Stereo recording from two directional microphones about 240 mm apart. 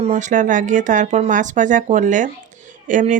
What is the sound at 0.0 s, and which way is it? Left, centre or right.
Speech, right.